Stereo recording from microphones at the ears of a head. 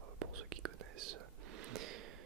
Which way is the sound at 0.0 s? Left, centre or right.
Right.